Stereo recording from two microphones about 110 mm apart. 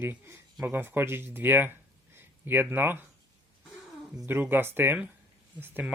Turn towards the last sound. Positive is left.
turn(degrees=-20)  # may be behind; listen again after turning